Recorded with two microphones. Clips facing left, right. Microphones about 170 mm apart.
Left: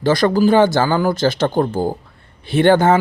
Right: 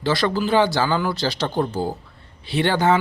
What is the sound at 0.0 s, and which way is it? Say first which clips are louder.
Speech: left 7 dB; 45° left (ahead or behind).